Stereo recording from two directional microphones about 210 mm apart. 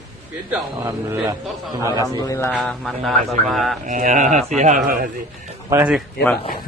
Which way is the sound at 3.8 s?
35° right (ahead or behind).